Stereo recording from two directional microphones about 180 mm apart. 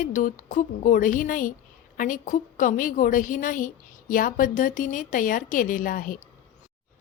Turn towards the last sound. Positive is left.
turn(degrees=50)  # may be behind; listen again after turning